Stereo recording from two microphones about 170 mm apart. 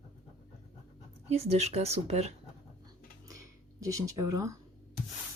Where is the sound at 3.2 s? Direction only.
20° right (ahead or behind).